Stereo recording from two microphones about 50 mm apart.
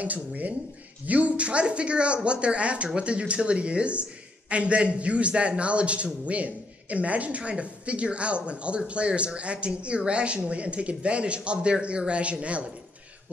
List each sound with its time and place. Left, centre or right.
0.0 s speech: right